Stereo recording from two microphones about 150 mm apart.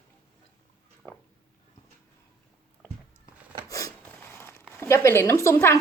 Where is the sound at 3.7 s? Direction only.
20° left (ahead or behind).